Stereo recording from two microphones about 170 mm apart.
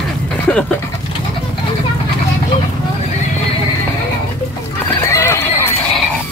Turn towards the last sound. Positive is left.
turn(degrees=15)  # may be behind; listen again after turning